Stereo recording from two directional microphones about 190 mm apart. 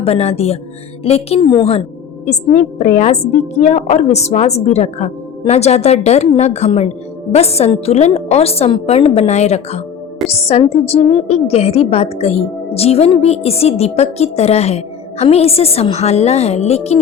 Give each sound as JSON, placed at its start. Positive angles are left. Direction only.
{"t": 0.0, "sound": "a woman's voice", "side_deg": 35}
{"t": 2.2, "sound": "a woman's voice", "side_deg": 40}